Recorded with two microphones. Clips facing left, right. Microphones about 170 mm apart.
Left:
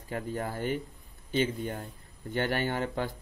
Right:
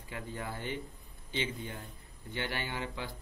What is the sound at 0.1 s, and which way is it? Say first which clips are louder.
Speech: left 7 dB; 45° left (ahead or behind).